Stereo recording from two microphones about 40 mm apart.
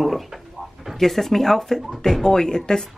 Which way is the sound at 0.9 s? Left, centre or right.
Centre.